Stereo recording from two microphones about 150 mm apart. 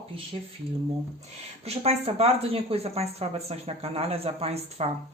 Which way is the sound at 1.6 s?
45° right (ahead or behind).